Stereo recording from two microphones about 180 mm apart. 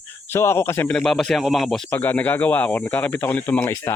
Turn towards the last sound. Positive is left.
turn(degrees=10)  # may be behind; listen again after turning